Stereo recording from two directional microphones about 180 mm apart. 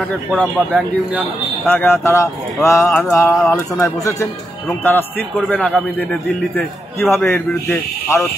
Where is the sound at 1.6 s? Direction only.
10° left (ahead or behind).